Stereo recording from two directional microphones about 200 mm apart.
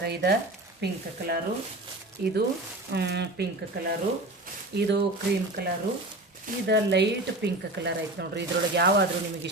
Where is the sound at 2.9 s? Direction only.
60° right (ahead or behind).